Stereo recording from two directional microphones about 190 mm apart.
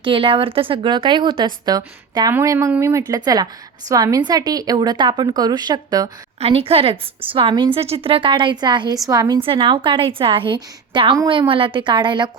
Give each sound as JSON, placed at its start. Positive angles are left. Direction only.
{"t": 0.0, "sound": "speech", "side_deg": -25}
{"t": 6.4, "sound": "speech", "side_deg": -30}